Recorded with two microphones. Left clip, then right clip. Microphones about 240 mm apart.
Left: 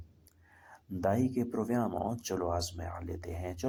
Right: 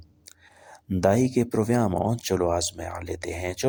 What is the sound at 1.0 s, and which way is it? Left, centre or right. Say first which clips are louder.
Speech: right 9 dB; right.